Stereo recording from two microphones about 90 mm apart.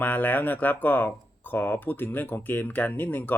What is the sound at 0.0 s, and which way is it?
Speech, 20° left (ahead or behind).